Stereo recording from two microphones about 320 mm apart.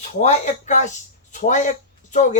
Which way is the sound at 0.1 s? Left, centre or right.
Left.